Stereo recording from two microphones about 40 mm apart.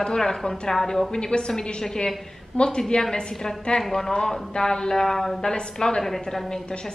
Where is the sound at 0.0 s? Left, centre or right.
Centre.